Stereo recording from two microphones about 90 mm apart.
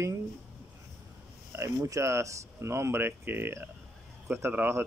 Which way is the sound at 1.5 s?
30° right (ahead or behind).